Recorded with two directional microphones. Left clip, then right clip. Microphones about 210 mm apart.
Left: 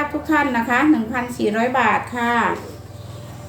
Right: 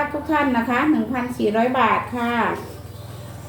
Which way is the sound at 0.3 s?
25° left (ahead or behind).